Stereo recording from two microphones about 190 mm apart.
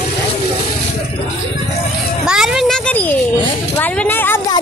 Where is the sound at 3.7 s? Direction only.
10° left (ahead or behind).